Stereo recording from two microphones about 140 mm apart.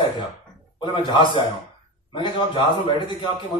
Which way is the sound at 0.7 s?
35° left (ahead or behind).